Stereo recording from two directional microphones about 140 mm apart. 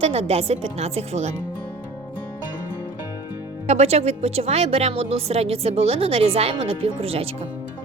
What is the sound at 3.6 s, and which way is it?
A woman's voice, 50° right (ahead or behind).